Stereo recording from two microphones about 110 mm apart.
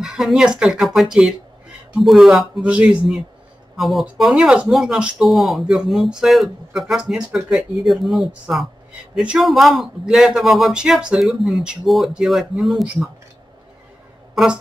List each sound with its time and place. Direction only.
0.0 s speech: 5° right (ahead or behind)
14.3 s speech: 5° right (ahead or behind)